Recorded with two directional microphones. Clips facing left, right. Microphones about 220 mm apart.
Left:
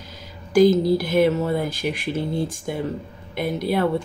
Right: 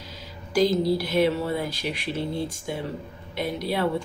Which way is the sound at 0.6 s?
50° left (ahead or behind).